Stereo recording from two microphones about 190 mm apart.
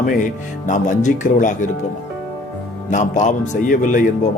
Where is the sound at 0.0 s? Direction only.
45° left (ahead or behind).